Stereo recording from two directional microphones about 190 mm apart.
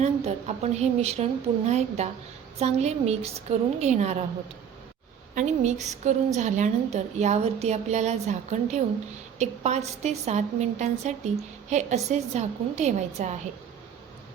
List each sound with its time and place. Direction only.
0.0 s a woman's voice: 35° right (ahead or behind)
5.3 s a woman's voice: 40° right (ahead or behind)